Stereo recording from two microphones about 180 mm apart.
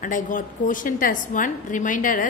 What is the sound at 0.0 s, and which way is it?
A woman's voice, 45° left (ahead or behind).